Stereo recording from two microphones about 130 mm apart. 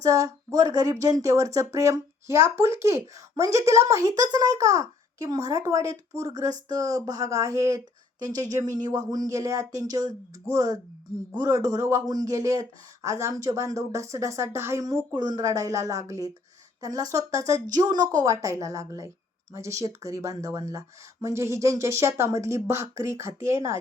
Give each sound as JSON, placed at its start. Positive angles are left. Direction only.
{"t": 0.0, "sound": "speech", "side_deg": -25}